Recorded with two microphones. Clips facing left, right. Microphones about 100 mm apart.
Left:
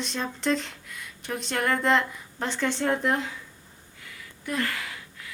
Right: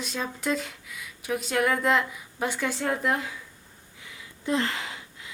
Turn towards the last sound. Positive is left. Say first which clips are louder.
# right 3 dB
turn(degrees=-25)  # may be behind; listen again after turning